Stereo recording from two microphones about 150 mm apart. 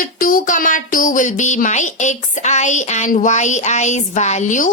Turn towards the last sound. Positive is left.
turn(degrees=55)  # may be behind; listen again after turning